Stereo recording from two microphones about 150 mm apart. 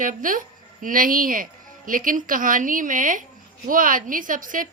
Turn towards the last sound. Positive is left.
turn(degrees=-65)  # may be behind; listen again after turning